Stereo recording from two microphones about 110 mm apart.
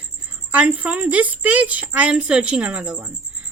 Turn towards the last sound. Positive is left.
turn(degrees=-10)  # may be behind; listen again after turning